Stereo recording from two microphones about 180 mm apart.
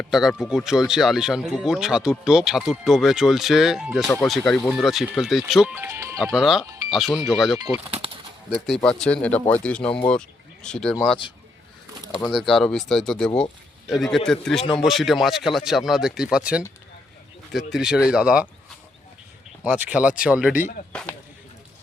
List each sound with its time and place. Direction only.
0.1 s speech: centre (ahead or behind)
6.3 s speech: 5° right (ahead or behind)
7.9 s bird flight: 35° right (ahead or behind)
8.6 s speech: centre (ahead or behind)
12.2 s speech: centre (ahead or behind)
19.6 s speech: 10° right (ahead or behind)
20.9 s speech: 5° left (ahead or behind)